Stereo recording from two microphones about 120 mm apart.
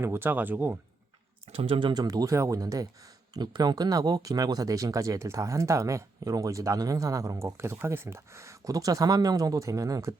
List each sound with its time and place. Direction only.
0.0 s speech: 20° right (ahead or behind)
1.5 s speech: 55° right (ahead or behind)
1.9 s speech: 35° right (ahead or behind)